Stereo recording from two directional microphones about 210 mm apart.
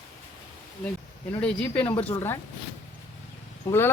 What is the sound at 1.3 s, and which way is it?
Speech, 5° left (ahead or behind).